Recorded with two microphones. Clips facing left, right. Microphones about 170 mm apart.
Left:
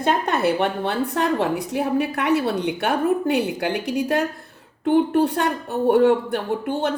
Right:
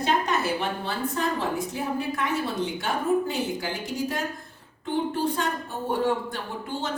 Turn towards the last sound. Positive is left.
turn(degrees=60)  # may be behind; listen again after turning